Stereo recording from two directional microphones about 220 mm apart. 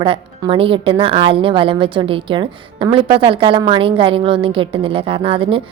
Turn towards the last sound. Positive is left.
turn(degrees=-25)  # may be behind; listen again after turning